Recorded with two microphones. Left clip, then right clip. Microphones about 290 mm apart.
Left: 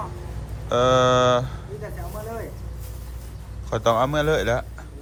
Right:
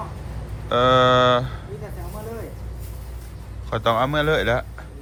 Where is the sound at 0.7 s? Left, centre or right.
Centre.